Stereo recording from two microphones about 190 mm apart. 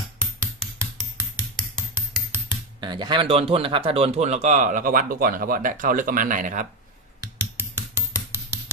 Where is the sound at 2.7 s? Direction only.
25° right (ahead or behind); by 6.7 s 40° right (ahead or behind).